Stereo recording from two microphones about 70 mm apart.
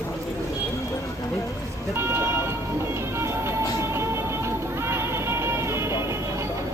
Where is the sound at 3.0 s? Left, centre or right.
Right.